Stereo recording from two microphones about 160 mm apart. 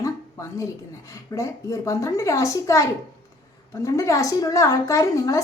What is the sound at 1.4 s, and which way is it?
A child's voice, 20° left (ahead or behind).